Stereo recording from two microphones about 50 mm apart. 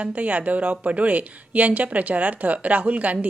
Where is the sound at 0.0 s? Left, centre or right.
Right.